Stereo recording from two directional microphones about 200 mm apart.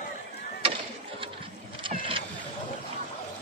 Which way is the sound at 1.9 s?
25° right (ahead or behind).